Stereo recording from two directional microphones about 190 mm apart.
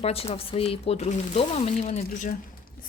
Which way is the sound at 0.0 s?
30° left (ahead or behind).